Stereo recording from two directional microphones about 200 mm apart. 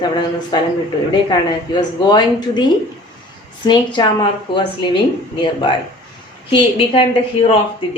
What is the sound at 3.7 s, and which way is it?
Speech, 25° left (ahead or behind).